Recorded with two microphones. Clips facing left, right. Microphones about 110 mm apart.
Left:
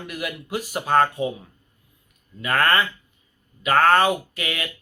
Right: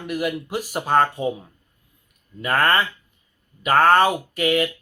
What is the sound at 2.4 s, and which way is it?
Speech, 35° right (ahead or behind).